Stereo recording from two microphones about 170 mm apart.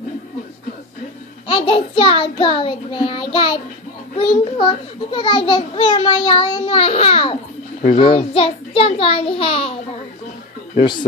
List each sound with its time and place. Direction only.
1.5 s a child's voice: 35° left (ahead or behind)
10.8 s speech: 25° left (ahead or behind)